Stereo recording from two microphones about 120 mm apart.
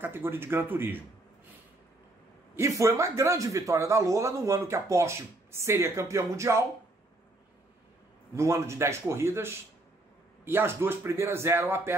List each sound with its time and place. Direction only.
0.0 s speech: 20° right (ahead or behind)
2.5 s a man's voice: 25° right (ahead or behind)
8.4 s a man's voice: 25° right (ahead or behind)